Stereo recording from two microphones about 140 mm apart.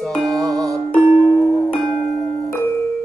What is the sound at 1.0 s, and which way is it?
Music, 15° right (ahead or behind).